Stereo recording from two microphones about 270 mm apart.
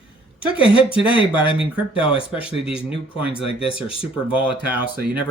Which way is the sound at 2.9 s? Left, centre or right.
Left.